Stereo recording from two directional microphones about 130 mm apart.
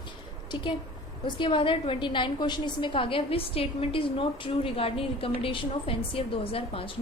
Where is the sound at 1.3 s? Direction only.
40° left (ahead or behind).